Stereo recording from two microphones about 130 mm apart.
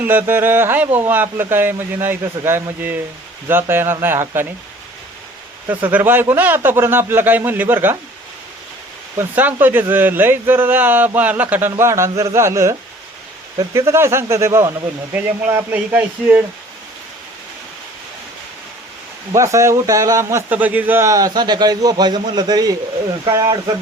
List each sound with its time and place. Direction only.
0.0 s speech: 15° right (ahead or behind)
5.6 s speech: 15° right (ahead or behind)
9.1 s a man's voice: 15° right (ahead or behind)
19.3 s a man's voice: 25° right (ahead or behind)
20.5 s a man's voice: 10° right (ahead or behind); by 23.7 s 30° right (ahead or behind)